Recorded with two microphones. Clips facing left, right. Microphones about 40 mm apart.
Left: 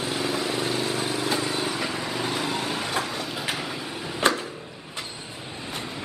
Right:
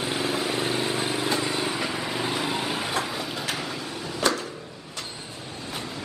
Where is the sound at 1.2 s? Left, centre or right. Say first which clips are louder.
Even; centre.